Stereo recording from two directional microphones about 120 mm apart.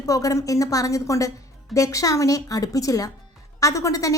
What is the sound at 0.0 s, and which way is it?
A woman's voice, 25° left (ahead or behind).